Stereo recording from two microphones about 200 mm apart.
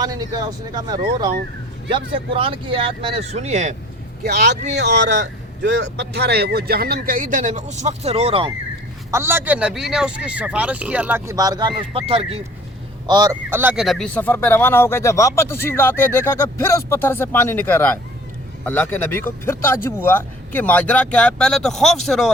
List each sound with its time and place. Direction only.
0.0 s speech: 20° right (ahead or behind); by 3.8 s 35° right (ahead or behind)
4.2 s speech: 55° right (ahead or behind); by 8.5 s 30° right (ahead or behind)
9.1 s a man's voice: 10° right (ahead or behind); by 12.4 s 30° right (ahead or behind)
13.1 s speech: 20° right (ahead or behind); by 22.3 s centre (ahead or behind)